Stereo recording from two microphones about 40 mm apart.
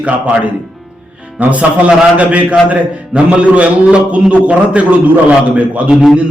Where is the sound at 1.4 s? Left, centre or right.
Right.